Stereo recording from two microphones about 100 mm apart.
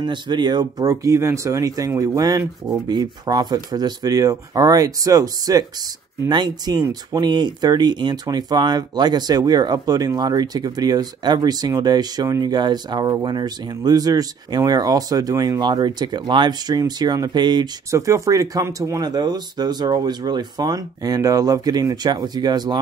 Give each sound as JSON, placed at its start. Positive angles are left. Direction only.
{"t": 0.0, "sound": "speech", "side_deg": -50}
{"t": 17.9, "sound": "speech", "side_deg": -30}